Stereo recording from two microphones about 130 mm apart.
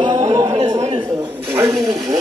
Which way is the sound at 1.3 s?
20° right (ahead or behind).